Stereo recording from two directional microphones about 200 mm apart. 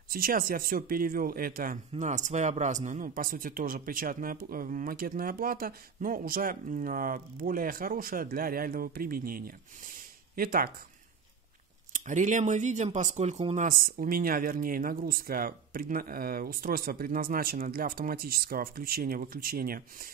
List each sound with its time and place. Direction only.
0.1 s speech: 45° right (ahead or behind)
11.9 s speech: 40° right (ahead or behind)